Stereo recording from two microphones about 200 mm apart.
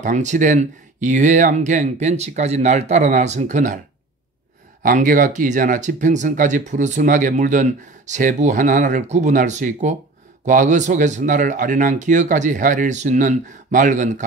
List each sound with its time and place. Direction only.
0.0 s speech: 35° right (ahead or behind)
4.8 s speech: 45° right (ahead or behind)